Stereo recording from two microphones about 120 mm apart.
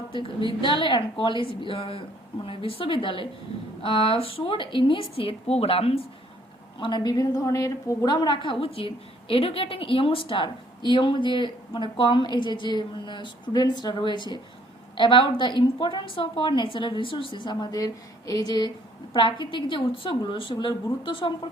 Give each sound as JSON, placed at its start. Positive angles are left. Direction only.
{"t": 0.1, "sound": "a woman's voice", "side_deg": 45}
{"t": 6.7, "sound": "a woman's voice", "side_deg": 40}